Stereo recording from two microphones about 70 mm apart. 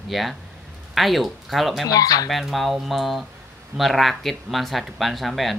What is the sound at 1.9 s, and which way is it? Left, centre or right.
Speech, left.